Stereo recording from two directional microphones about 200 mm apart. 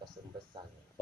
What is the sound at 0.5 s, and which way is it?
Speech, 25° right (ahead or behind).